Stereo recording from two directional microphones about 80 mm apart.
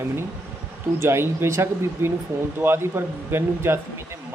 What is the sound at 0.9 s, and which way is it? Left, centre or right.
Speech, right.